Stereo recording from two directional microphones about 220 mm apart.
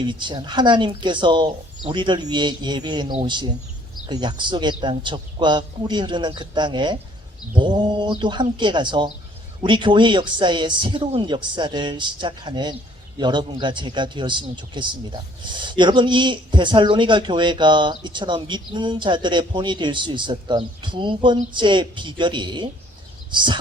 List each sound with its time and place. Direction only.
0.0 s speech: 20° right (ahead or behind)